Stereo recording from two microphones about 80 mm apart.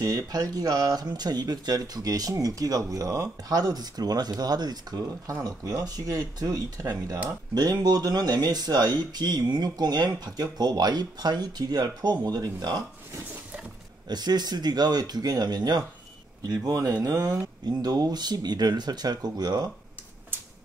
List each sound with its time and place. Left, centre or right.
0.0 s speech: right
5.0 s speech: right
14.0 s speech: right